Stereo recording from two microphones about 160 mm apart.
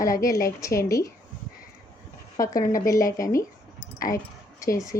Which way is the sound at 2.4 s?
60° left (ahead or behind).